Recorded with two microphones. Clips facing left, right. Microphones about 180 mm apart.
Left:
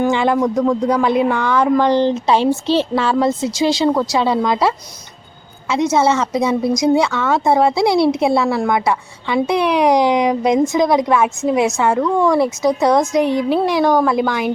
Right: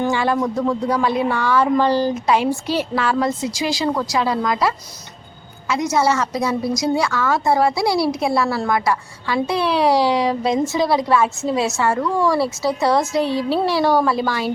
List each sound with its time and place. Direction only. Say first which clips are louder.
0.0 s a woman's voice: left 4 dB; 20° left (ahead or behind)
0.5 s a man's voice: left 4 dB; 5° right (ahead or behind)
1.0 s a woman's voice: left 3 dB; 20° left (ahead or behind)